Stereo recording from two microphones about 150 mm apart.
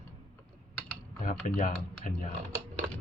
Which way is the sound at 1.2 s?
60° left (ahead or behind).